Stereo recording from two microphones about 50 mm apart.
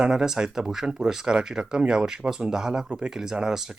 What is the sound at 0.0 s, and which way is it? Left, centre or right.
Speech, centre.